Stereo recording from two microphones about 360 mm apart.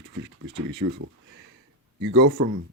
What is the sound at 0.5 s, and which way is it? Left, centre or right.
Speech, right.